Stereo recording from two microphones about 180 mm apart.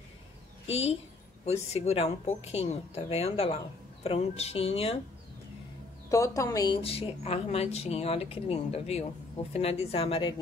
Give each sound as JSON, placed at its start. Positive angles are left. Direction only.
{"t": 0.7, "sound": "a woman's voice", "side_deg": 35}
{"t": 6.0, "sound": "a woman's voice", "side_deg": 15}
{"t": 6.8, "sound": "speech", "side_deg": 30}